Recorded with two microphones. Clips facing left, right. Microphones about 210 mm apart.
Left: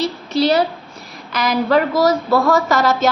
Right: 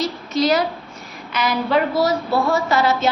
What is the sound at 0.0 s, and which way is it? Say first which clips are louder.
A woman's voice: left 2 dB; 30° left (ahead or behind).